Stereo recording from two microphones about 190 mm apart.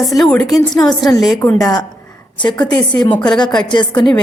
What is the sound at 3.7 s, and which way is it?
Speech, 25° left (ahead or behind).